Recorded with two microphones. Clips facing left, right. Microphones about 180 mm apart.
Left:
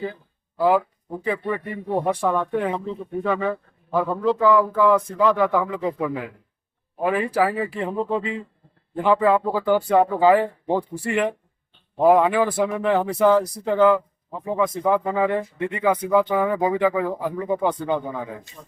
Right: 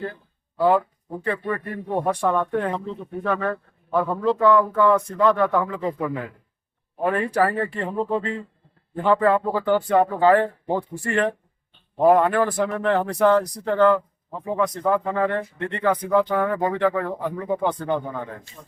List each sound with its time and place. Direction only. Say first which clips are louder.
1.5 s speech: left 1 dB; 5° left (ahead or behind)